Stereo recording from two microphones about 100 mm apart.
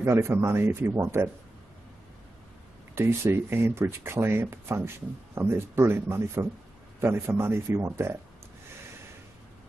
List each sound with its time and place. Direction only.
0.0 s speech: 25° right (ahead or behind)
2.9 s speech: 25° right (ahead or behind)